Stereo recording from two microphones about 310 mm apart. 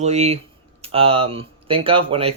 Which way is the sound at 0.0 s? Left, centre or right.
Right.